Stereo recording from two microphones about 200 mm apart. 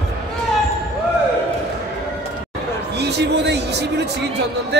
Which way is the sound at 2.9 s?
55° right (ahead or behind).